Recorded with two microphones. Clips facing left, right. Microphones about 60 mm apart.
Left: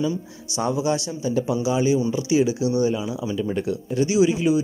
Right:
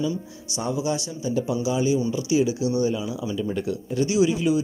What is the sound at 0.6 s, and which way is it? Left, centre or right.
A man's voice, left.